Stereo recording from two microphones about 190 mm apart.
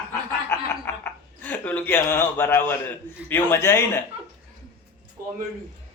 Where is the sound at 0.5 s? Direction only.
15° left (ahead or behind).